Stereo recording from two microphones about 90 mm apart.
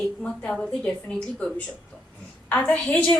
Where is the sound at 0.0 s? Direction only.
10° left (ahead or behind).